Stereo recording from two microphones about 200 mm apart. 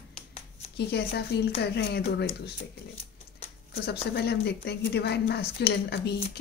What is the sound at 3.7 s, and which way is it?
A woman's voice, 55° left (ahead or behind).